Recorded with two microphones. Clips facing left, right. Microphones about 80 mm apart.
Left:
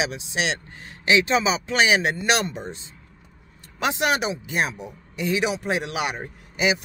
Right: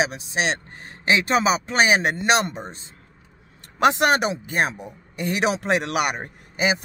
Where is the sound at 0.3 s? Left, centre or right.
Right.